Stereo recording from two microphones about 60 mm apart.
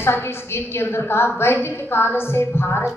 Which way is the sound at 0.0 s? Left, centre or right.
Left.